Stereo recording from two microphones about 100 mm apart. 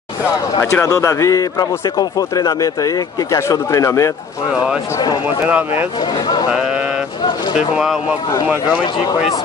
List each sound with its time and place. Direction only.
0.7 s speech: 30° left (ahead or behind)
5.5 s speech: 15° right (ahead or behind)
5.9 s speech: 45° left (ahead or behind)
6.5 s a sound: 10° right (ahead or behind)
7.5 s speech: 5° right (ahead or behind)